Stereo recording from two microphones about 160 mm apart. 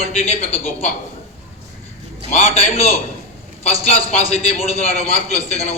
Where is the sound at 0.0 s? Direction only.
40° left (ahead or behind).